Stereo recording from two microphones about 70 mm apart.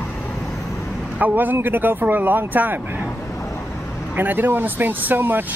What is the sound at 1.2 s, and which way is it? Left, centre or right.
Speech, right.